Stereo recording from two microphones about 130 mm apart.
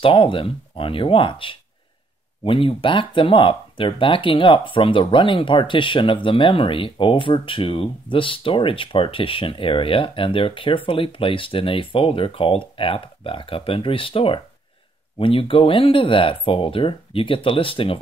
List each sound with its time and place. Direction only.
0.0 s speech: 40° left (ahead or behind)